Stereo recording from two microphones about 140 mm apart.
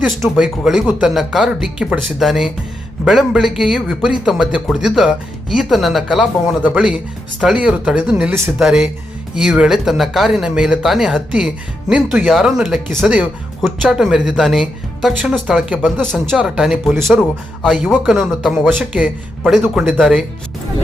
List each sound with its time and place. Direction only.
0.0 s speech: centre (ahead or behind)
15.8 s speech: 5° left (ahead or behind)
18.7 s speech: 10° right (ahead or behind)
19.4 s speech: centre (ahead or behind)